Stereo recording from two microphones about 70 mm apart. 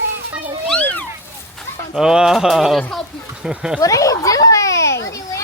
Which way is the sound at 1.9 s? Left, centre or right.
Centre.